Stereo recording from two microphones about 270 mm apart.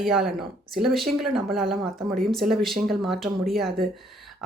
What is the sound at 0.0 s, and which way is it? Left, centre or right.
Speech, centre.